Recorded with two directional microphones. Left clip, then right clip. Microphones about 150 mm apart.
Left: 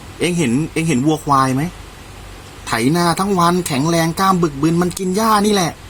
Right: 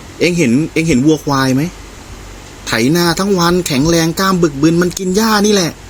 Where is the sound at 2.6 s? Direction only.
15° right (ahead or behind).